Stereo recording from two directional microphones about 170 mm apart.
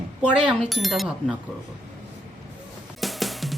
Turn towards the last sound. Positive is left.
turn(degrees=0)  # may be behind; listen again after turning